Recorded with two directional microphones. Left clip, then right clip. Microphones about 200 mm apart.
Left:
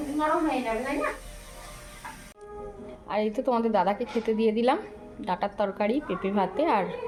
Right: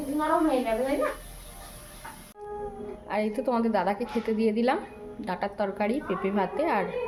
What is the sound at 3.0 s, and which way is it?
A woman's voice, 10° left (ahead or behind).